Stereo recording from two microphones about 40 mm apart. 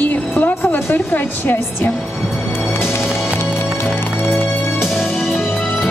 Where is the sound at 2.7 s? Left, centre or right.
Left.